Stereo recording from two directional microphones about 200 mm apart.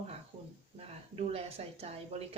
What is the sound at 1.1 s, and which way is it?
Speech, 30° right (ahead or behind).